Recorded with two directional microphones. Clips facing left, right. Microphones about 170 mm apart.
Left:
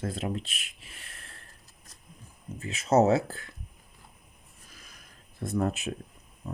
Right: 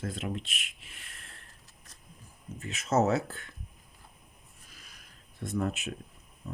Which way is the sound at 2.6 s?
35° left (ahead or behind).